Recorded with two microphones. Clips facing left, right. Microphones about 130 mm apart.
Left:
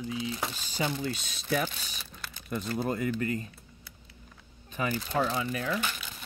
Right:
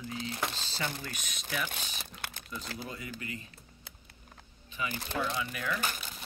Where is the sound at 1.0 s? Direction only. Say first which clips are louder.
Left 8 dB; 30° left (ahead or behind).